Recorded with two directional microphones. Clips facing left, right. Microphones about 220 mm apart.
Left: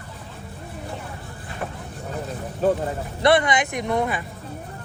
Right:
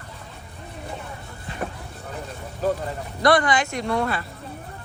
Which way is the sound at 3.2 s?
25° left (ahead or behind).